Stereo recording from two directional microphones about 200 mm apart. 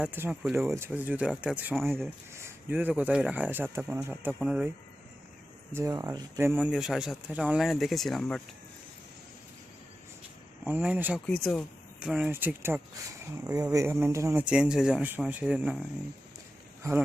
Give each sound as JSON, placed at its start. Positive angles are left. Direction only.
{"t": 0.0, "sound": "speech", "side_deg": -10}
{"t": 5.7, "sound": "speech", "side_deg": -15}
{"t": 10.6, "sound": "speech", "side_deg": -5}
{"t": 11.3, "sound": "speech", "side_deg": 5}
{"t": 16.8, "sound": "speech", "side_deg": -15}